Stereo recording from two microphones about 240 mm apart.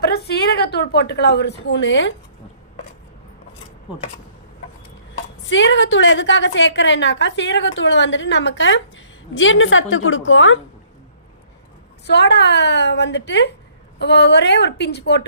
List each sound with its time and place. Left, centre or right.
0.1 s a woman's voice: left
5.5 s a woman's voice: left
12.0 s a woman's voice: left